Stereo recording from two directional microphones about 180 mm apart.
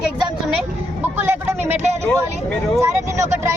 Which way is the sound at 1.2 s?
10° right (ahead or behind).